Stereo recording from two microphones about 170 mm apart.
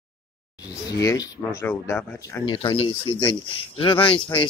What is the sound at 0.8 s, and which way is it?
Speech, 20° left (ahead or behind).